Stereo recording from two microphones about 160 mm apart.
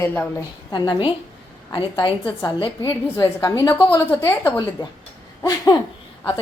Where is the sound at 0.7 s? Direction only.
25° left (ahead or behind).